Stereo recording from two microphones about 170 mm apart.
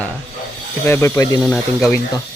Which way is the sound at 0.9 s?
15° left (ahead or behind).